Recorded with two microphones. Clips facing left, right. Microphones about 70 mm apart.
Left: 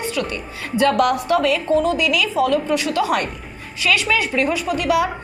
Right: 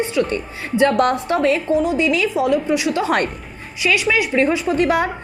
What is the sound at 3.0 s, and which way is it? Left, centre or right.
Speech, right.